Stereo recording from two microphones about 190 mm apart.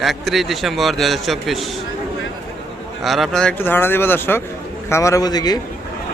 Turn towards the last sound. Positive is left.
turn(degrees=20)  # may be behind; listen again after turning